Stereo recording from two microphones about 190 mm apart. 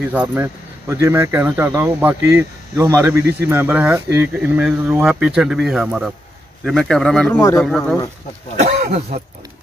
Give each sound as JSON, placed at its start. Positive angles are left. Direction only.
{"t": 0.0, "sound": "speech", "side_deg": -5}
{"t": 7.6, "sound": "speech", "side_deg": 0}
{"t": 8.8, "sound": "speech", "side_deg": -40}